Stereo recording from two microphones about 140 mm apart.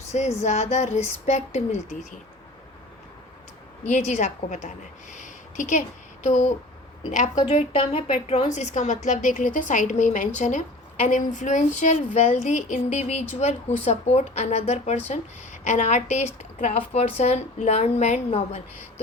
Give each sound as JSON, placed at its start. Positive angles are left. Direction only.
{"t": 0.1, "sound": "speech", "side_deg": 55}
{"t": 3.8, "sound": "a woman's voice", "side_deg": 55}
{"t": 5.1, "sound": "a sound", "side_deg": 60}
{"t": 6.2, "sound": "a woman's voice", "side_deg": 60}
{"t": 7.4, "sound": "a woman's voice", "side_deg": 45}